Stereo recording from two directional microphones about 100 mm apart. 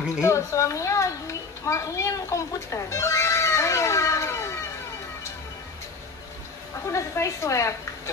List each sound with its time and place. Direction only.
0.2 s a child's voice: 30° left (ahead or behind)
6.9 s a woman's voice: 30° left (ahead or behind)